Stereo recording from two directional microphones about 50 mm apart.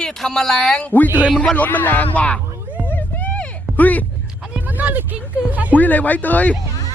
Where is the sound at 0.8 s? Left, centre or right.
Left.